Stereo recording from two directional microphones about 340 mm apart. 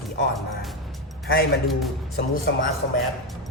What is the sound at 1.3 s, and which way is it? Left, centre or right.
Speech, left.